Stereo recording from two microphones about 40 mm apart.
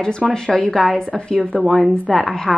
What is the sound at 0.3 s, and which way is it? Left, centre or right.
Speech, left.